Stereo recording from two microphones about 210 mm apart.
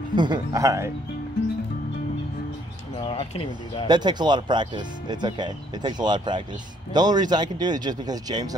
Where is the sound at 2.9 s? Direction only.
25° left (ahead or behind).